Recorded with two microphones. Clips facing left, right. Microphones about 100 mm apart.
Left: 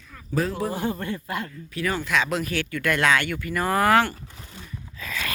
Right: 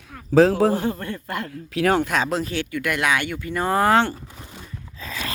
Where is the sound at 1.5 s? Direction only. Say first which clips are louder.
Right 12 dB; 80° right.